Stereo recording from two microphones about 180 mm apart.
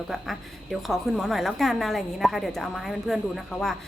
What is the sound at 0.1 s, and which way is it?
A woman's voice, centre (ahead or behind).